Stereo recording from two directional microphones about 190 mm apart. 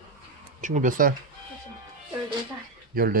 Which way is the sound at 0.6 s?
40° right (ahead or behind).